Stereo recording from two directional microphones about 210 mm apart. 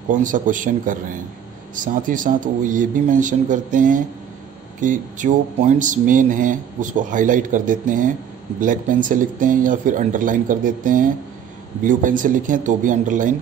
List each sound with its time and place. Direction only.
0.1 s speech: 40° right (ahead or behind)